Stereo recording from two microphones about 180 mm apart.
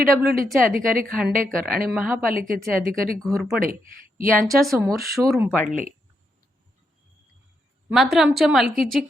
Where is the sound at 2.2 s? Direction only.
55° right (ahead or behind).